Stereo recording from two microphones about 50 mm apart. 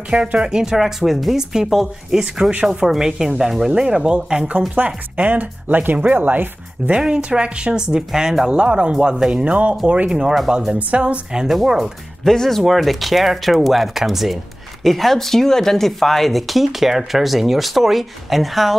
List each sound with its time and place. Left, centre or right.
0.1 s speech: right
4.5 s speech: right
6.9 s speech: right
8.5 s speech: right
10.0 s speech: centre
10.7 s speech: right
11.3 s speech: centre
12.3 s speech: centre